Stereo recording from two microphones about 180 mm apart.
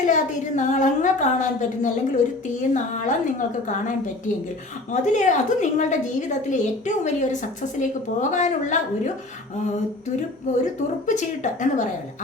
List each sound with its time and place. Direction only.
0.0 s a woman's voice: 45° left (ahead or behind)
10.5 s a woman's voice: 40° left (ahead or behind)